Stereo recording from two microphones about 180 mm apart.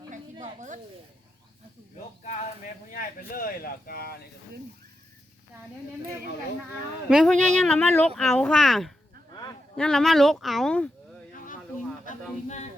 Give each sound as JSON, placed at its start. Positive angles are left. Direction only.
{"t": 0.1, "sound": "a sound", "side_deg": -40}
{"t": 2.9, "sound": "speech", "side_deg": 50}
{"t": 7.1, "sound": "speech", "side_deg": 0}
{"t": 7.3, "sound": "speech", "side_deg": -40}
{"t": 7.6, "sound": "speech", "side_deg": 5}